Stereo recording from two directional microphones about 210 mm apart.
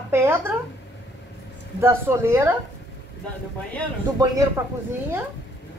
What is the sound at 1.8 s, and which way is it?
Speech, 10° right (ahead or behind).